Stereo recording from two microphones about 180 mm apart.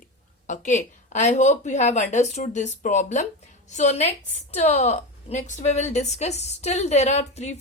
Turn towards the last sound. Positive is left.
turn(degrees=40)  # may be behind; listen again after turning